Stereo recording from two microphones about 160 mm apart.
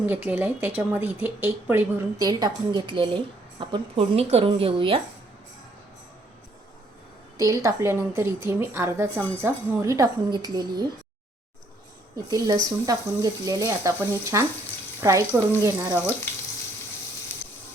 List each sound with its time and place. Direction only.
0.0 s a woman's voice: 10° right (ahead or behind); by 4.9 s 35° right (ahead or behind)
7.3 s a woman's voice: 20° right (ahead or behind)
12.1 s a woman's voice: 25° right (ahead or behind)
16.3 s frying: 15° left (ahead or behind)